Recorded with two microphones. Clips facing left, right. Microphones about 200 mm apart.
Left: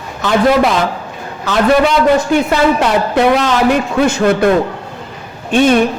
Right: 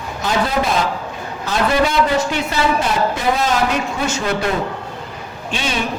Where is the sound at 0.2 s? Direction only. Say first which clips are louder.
Left 8 dB; 70° left (ahead or behind).